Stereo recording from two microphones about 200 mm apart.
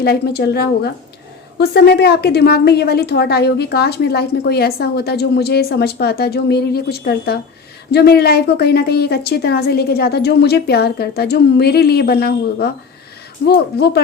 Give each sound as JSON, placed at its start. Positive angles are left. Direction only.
{"t": 0.0, "sound": "a woman's voice", "side_deg": 50}